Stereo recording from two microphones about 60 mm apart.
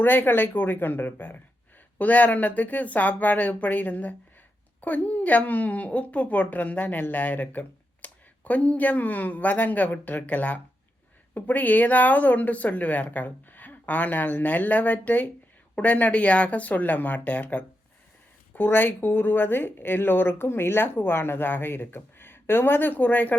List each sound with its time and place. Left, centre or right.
0.0 s a woman's voice: left